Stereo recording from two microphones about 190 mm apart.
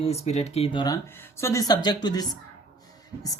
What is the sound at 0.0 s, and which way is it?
Speech, 35° left (ahead or behind).